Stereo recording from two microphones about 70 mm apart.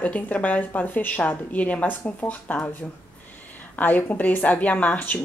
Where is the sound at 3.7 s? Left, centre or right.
Left.